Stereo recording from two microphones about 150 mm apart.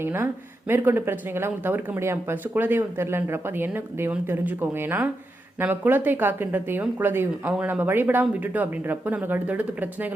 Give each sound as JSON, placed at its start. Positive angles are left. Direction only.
{"t": 0.0, "sound": "speech", "side_deg": -15}